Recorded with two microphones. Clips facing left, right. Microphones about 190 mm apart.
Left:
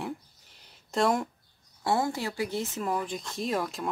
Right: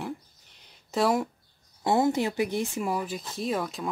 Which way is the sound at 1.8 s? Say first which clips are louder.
Right 4 dB; 20° right (ahead or behind).